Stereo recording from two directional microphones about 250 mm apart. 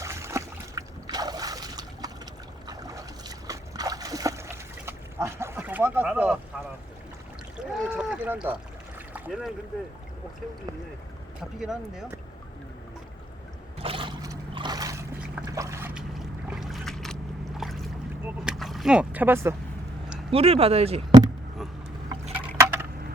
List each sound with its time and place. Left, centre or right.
0.0 s boat: centre
2.6 s splash: centre
7.5 s speech: centre
9.1 s boat: centre
11.6 s speech: centre
13.7 s boat: right; by 17.8 s centre
18.3 s a sound: centre
20.3 s speech: right
22.4 s a sound: centre